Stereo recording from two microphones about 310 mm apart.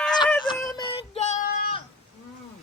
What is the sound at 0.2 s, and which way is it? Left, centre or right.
Child singing, centre.